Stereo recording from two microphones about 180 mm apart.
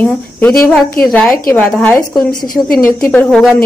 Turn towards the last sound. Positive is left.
turn(degrees=0)  # may be behind; listen again after turning